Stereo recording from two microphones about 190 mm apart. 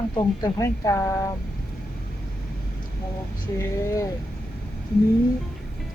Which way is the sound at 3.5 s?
15° left (ahead or behind).